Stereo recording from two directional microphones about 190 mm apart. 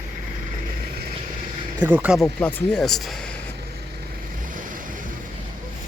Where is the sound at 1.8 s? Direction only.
10° right (ahead or behind).